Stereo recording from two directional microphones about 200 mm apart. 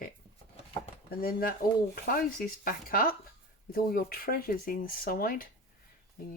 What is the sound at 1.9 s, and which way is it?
Speech, 45° left (ahead or behind).